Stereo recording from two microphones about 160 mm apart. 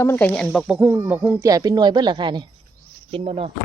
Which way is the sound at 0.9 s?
15° right (ahead or behind).